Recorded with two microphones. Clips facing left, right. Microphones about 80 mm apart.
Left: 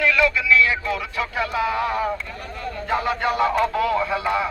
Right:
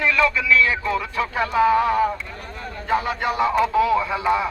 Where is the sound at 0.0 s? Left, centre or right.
Right.